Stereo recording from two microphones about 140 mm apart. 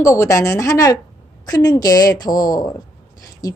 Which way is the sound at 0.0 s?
20° left (ahead or behind).